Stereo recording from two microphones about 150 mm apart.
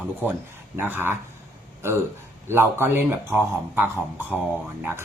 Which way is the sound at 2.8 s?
15° right (ahead or behind).